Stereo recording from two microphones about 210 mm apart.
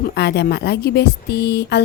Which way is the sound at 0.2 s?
50° left (ahead or behind).